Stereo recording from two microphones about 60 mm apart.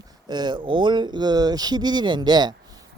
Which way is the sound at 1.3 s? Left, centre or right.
Right.